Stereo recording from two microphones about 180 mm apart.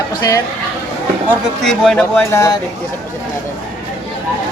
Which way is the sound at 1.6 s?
Centre (ahead or behind).